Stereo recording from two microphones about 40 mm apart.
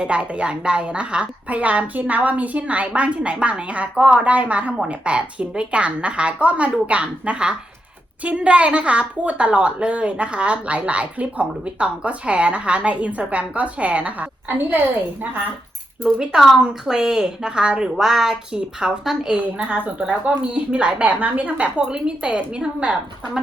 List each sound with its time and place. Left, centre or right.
0.0 s a woman's voice: right
16.6 s a woman's voice: centre
17.9 s a woman's voice: centre
18.5 s a woman's voice: right
20.1 s a woman's voice: right
21.8 s a woman's voice: right